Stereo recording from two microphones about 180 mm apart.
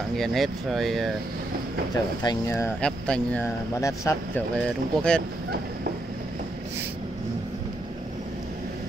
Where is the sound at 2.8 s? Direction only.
5° left (ahead or behind).